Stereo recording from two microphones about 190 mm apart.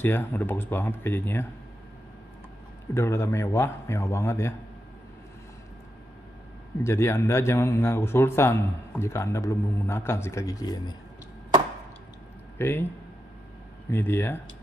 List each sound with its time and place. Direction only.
0.0 s speech: 10° left (ahead or behind)
2.9 s speech: 15° left (ahead or behind)
6.8 s speech: 15° left (ahead or behind)
12.5 s speech: 10° left (ahead or behind)
13.8 s speech: 10° left (ahead or behind)